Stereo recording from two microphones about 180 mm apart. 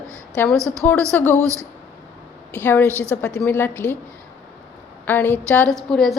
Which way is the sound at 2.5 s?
10° left (ahead or behind).